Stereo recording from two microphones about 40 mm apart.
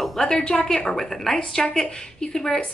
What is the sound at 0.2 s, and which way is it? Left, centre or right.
Speech, centre.